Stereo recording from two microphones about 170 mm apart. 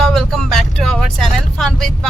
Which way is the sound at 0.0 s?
5° left (ahead or behind).